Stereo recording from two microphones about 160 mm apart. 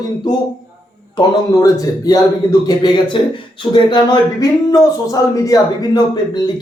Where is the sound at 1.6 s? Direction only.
20° left (ahead or behind).